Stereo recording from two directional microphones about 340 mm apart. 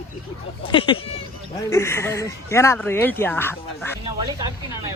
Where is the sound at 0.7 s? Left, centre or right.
Centre.